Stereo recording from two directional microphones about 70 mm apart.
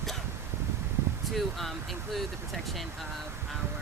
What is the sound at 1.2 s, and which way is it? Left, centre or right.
Speech, centre.